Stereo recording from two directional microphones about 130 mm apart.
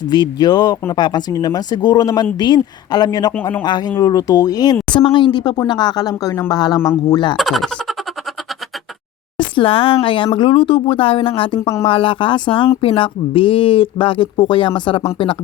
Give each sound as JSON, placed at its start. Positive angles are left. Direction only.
{"t": 0.0, "sound": "speech", "side_deg": 30}
{"t": 7.3, "sound": "speech", "side_deg": 0}
{"t": 9.4, "sound": "speech", "side_deg": 40}